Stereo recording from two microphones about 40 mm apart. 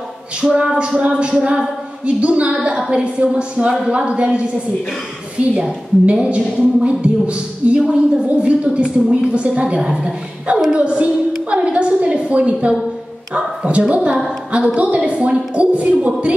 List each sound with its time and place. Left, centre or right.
0.4 s a woman's voice: right
2.5 s speech: right
5.5 s a woman's voice: right